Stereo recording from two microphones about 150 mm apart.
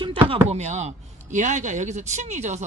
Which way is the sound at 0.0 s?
35° right (ahead or behind).